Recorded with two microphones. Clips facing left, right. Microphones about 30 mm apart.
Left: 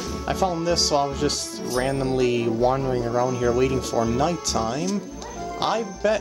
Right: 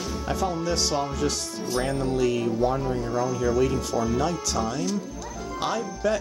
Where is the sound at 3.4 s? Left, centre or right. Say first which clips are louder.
Left 1 dB; left.